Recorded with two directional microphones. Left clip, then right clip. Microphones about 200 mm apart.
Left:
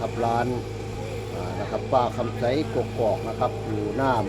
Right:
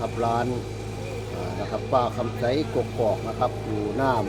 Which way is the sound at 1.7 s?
Centre (ahead or behind).